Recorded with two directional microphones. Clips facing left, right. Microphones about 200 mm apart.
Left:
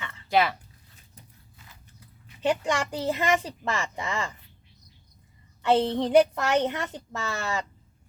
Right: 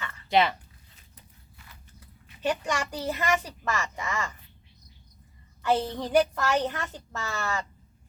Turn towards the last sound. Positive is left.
turn(degrees=20)  # may be behind; listen again after turning